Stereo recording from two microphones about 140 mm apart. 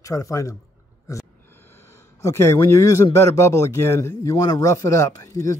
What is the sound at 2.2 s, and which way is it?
Speech, 20° left (ahead or behind).